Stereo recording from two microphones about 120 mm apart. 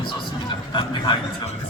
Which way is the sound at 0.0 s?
45° left (ahead or behind).